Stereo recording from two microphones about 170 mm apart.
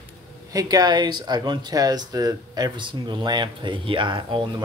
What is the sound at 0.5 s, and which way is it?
Speech, 20° right (ahead or behind).